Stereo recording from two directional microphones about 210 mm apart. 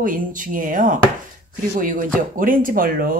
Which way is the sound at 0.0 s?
40° right (ahead or behind).